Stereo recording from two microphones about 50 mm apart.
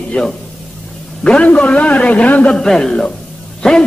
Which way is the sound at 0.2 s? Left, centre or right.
Centre.